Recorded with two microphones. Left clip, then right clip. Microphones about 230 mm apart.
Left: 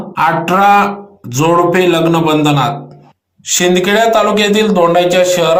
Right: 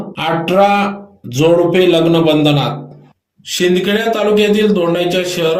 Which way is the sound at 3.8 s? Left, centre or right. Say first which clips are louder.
Left 5 dB; centre.